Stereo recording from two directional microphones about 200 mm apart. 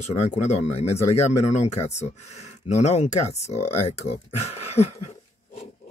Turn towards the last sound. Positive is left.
turn(degrees=30)  # may be behind; listen again after turning